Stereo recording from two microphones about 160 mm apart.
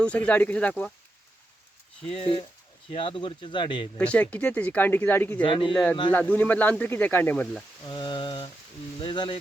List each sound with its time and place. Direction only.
0.0 s speech: 10° left (ahead or behind)
2.0 s speech: 35° left (ahead or behind)
3.9 s speech: 10° left (ahead or behind)
5.4 s speech: 30° left (ahead or behind)
5.7 s speech: 5° left (ahead or behind)
7.9 s mantra: 30° left (ahead or behind)
9.0 s speech: 30° left (ahead or behind)